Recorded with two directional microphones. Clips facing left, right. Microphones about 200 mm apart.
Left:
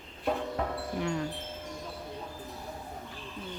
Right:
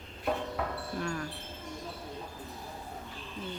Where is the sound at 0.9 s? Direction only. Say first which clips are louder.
Left 4 dB; 20° left (ahead or behind).